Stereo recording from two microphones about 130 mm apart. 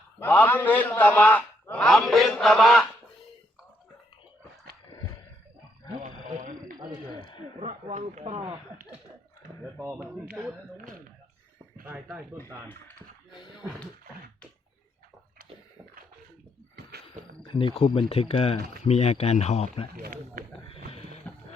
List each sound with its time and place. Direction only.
0.2 s a man's voice: 15° left (ahead or behind)
6.0 s wild animals: 80° right
6.7 s a sound: 35° right (ahead or behind)
8.0 s speech: 50° right (ahead or behind)
9.7 s speech: 15° right (ahead or behind)
12.4 s a man's voice: 15° left (ahead or behind)
17.5 s speech: 40° left (ahead or behind)
20.7 s a sound: 50° left (ahead or behind)